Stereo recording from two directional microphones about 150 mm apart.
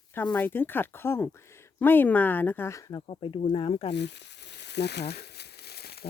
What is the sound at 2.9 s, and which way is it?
Speech, 35° left (ahead or behind).